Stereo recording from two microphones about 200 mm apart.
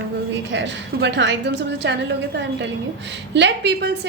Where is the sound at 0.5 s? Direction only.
65° right (ahead or behind).